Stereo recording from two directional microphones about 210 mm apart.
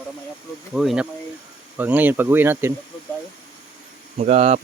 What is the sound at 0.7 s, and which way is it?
Speech, centre (ahead or behind).